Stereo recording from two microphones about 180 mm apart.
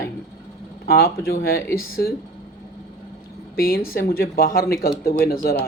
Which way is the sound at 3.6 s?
55° left (ahead or behind).